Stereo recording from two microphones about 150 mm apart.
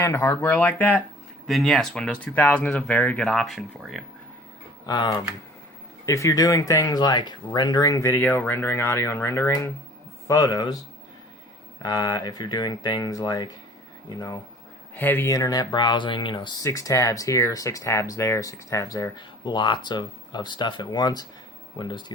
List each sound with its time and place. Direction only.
0.0 s speech: 15° left (ahead or behind)
1.5 s speech: centre (ahead or behind)
4.9 s speech: 25° left (ahead or behind)
11.8 s speech: 25° left (ahead or behind)
14.9 s speech: 15° left (ahead or behind); by 22.0 s 30° left (ahead or behind)